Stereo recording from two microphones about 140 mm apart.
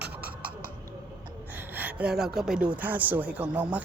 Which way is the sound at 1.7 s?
10° right (ahead or behind).